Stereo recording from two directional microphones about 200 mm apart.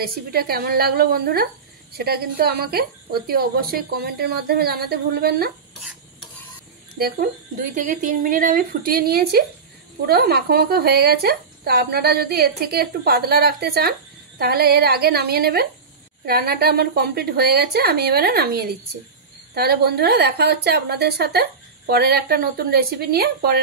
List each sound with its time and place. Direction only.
0.0 s a woman's voice: 50° right (ahead or behind)
7.0 s a woman's voice: 50° right (ahead or behind)